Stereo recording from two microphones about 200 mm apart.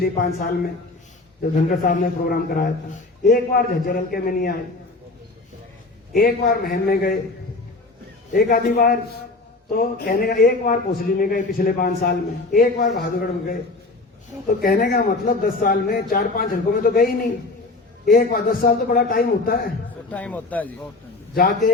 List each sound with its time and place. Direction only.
0.0 s a man's voice: 50° left (ahead or behind)
1.5 s a man's voice: 45° left (ahead or behind)
6.1 s a man's voice: 50° left (ahead or behind)
8.3 s a man's voice: 45° left (ahead or behind)
14.6 s a man's voice: 45° left (ahead or behind)
20.1 s speech: 5° left (ahead or behind)
21.3 s a man's voice: 45° left (ahead or behind)